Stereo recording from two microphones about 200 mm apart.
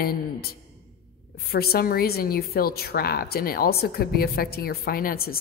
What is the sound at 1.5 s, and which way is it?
A woman's voice, 50° left (ahead or behind).